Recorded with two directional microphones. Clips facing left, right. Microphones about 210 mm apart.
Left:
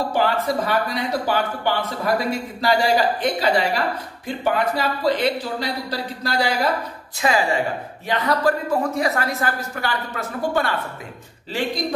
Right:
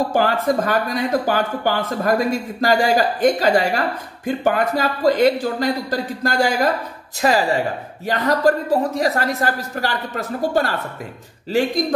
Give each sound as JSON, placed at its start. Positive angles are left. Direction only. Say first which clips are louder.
{"t": 0.1, "sound": "a woman's voice", "louder": "right 3 dB", "side_deg": -45}